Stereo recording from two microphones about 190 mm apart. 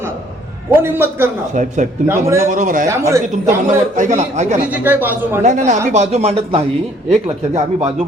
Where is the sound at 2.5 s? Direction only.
45° right (ahead or behind).